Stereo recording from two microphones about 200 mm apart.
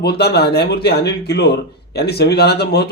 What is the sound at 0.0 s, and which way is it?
Speech, 55° left (ahead or behind).